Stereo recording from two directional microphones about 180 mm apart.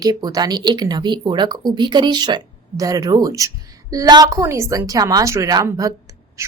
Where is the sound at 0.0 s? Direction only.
20° right (ahead or behind).